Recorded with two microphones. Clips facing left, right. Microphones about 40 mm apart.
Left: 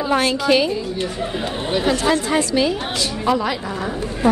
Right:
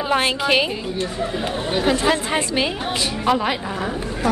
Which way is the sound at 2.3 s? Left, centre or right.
Right.